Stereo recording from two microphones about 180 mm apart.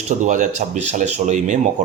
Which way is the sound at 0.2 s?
45° right (ahead or behind).